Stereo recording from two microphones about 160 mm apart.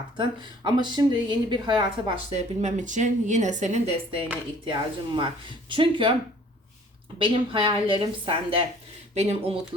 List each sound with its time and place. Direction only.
0.2 s a woman's voice: 30° right (ahead or behind)
2.3 s speech: 45° right (ahead or behind)
4.6 s speech: 30° right (ahead or behind)
7.2 s speech: 35° right (ahead or behind)